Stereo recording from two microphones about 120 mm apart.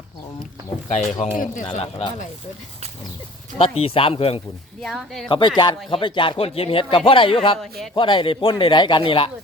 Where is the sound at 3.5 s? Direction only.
55° left (ahead or behind).